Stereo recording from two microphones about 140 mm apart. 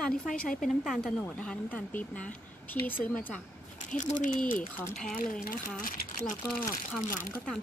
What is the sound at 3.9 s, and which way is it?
Speech, 65° left (ahead or behind).